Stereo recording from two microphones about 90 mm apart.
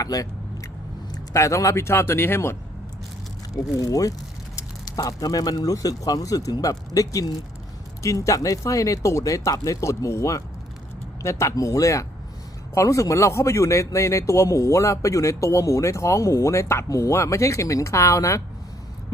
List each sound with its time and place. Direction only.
0.0 s vehicle: 40° left (ahead or behind)
1.1 s a man's voice: 35° left (ahead or behind)
3.8 s a man's voice: 40° left (ahead or behind)